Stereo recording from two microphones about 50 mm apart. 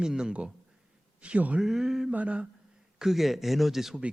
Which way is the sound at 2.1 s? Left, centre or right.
Right.